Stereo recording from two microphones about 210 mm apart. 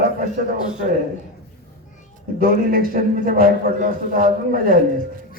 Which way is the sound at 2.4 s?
45° right (ahead or behind).